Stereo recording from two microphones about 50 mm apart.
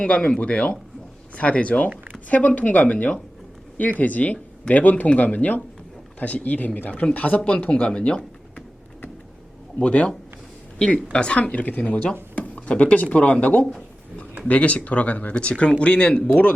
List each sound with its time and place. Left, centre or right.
0.0 s speech: left
9.7 s speech: left